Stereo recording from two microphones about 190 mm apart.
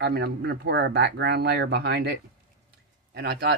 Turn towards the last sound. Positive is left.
turn(degrees=-60)  # may be behind; listen again after turning